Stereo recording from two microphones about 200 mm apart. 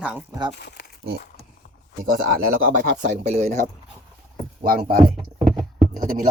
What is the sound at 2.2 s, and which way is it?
Speech, 45° right (ahead or behind).